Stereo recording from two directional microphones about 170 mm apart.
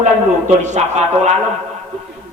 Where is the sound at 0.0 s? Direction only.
45° right (ahead or behind).